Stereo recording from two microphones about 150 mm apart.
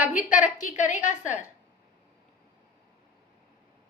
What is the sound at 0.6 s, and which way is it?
Speech, 55° left (ahead or behind).